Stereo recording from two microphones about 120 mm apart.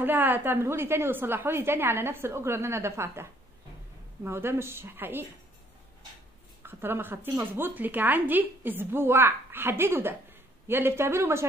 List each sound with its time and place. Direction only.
0.0 s a woman's voice: 15° right (ahead or behind)
6.6 s a woman's voice: 20° right (ahead or behind)